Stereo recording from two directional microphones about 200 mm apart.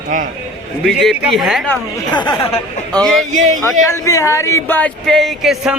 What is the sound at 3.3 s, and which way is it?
Speech, 35° right (ahead or behind).